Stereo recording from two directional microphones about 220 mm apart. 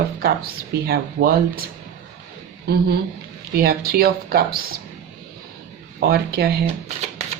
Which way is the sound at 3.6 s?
45° right (ahead or behind).